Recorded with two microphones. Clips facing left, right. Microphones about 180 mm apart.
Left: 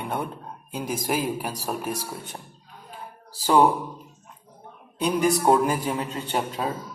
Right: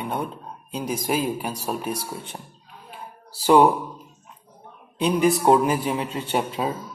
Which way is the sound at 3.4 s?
15° right (ahead or behind).